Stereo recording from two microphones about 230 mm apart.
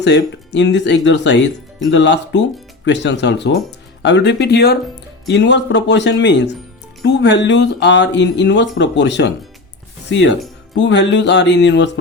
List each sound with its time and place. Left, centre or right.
0.0 s speech: left